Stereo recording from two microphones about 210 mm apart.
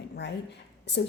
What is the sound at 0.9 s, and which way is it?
Speech, 55° left (ahead or behind).